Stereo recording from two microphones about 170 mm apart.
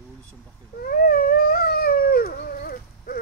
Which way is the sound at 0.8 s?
60° left (ahead or behind).